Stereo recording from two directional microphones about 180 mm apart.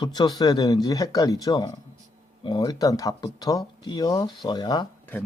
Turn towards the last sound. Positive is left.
turn(degrees=10)  # may be behind; listen again after turning